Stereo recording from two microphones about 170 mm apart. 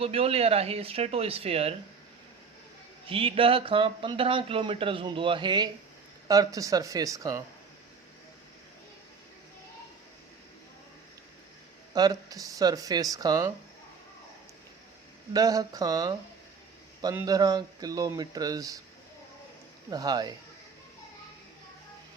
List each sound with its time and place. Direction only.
0.0 s speech: 35° right (ahead or behind)
3.1 s speech: 35° right (ahead or behind)
11.9 s speech: 20° right (ahead or behind)
15.3 s speech: 20° right (ahead or behind)
17.2 s speech: 20° right (ahead or behind)
19.9 s speech: 25° right (ahead or behind)